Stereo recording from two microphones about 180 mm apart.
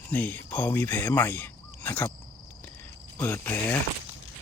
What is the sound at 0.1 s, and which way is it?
Speech, 10° left (ahead or behind).